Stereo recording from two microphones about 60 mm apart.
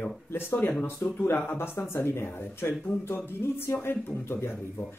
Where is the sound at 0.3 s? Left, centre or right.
Left.